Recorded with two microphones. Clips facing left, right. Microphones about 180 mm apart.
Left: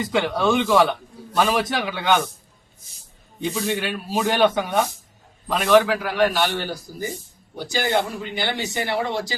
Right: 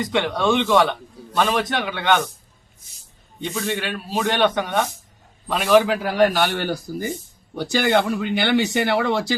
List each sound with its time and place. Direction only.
0.0 s speech: centre (ahead or behind)
3.4 s speech: centre (ahead or behind)
5.7 s a man's voice: 15° right (ahead or behind)
6.0 s speech: 35° right (ahead or behind); by 9.3 s 70° right (ahead or behind)